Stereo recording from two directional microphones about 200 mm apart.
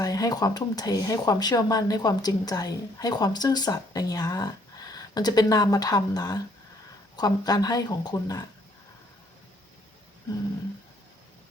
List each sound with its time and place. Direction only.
0.0 s speech: 20° left (ahead or behind)